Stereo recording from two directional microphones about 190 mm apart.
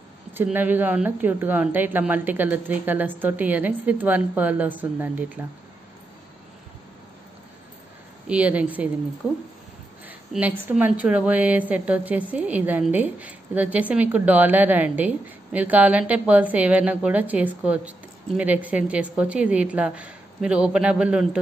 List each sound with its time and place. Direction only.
0.3 s a woman's voice: 10° right (ahead or behind)
8.3 s a woman's voice: 5° right (ahead or behind)
10.0 s a sound: 10° right (ahead or behind)
10.6 s a woman's voice: 10° right (ahead or behind)